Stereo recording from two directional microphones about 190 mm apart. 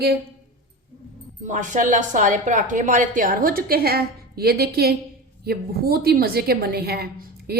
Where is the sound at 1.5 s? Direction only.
40° right (ahead or behind).